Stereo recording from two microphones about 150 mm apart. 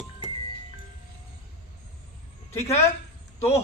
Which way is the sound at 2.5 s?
20° left (ahead or behind).